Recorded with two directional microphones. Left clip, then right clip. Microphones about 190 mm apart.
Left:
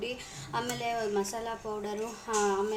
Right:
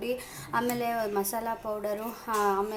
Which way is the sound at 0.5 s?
20° right (ahead or behind).